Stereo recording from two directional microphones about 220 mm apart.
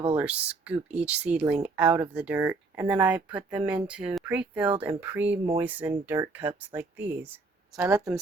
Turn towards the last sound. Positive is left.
turn(degrees=-5)  # may be behind; listen again after turning